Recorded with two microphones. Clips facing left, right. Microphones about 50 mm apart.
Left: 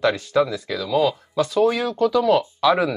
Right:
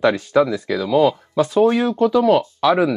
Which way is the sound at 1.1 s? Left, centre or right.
Centre.